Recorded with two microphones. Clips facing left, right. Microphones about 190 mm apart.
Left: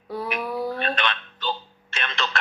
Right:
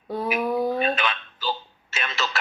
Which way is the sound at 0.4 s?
20° right (ahead or behind).